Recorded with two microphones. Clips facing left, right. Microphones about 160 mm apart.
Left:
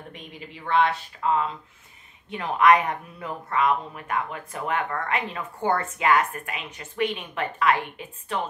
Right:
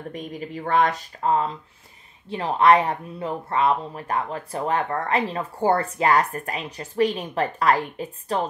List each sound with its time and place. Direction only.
0.1 s speech: 45° right (ahead or behind)